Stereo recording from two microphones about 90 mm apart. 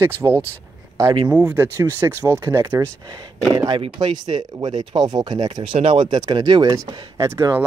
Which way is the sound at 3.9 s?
60° right (ahead or behind).